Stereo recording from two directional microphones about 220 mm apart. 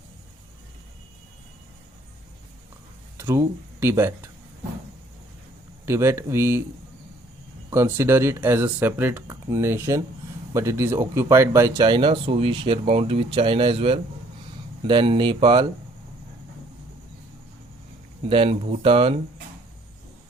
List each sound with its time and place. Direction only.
3.2 s speech: 10° right (ahead or behind)
5.8 s speech: 10° right (ahead or behind)
7.7 s speech: 10° right (ahead or behind)
18.3 s speech: 25° right (ahead or behind)